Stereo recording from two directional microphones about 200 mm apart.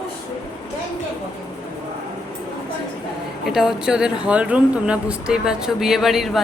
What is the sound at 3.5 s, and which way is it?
Speech, centre (ahead or behind).